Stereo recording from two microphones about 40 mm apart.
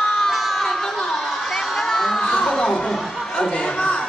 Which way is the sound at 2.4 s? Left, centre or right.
Centre.